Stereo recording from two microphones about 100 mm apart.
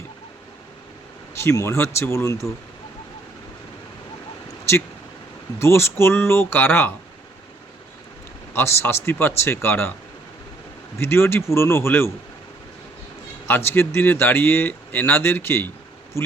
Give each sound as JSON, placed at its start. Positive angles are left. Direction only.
{"t": 1.3, "sound": "speech", "side_deg": 30}
{"t": 5.5, "sound": "speech", "side_deg": 25}
{"t": 8.5, "sound": "speech", "side_deg": 25}
{"t": 10.9, "sound": "speech", "side_deg": 25}
{"t": 13.5, "sound": "speech", "side_deg": 25}